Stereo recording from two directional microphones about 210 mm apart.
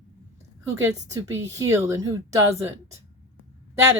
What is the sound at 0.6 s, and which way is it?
Speech, 15° right (ahead or behind).